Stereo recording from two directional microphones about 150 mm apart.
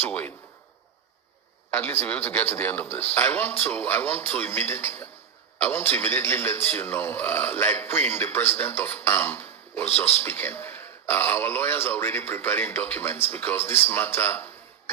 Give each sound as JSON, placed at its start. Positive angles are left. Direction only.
{"t": 0.0, "sound": "speech", "side_deg": 10}
{"t": 1.7, "sound": "speech", "side_deg": 15}